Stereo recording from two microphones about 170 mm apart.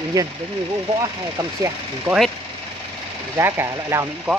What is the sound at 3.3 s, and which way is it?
Speech, 15° right (ahead or behind).